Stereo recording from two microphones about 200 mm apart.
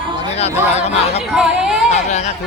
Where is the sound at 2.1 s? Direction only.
35° left (ahead or behind).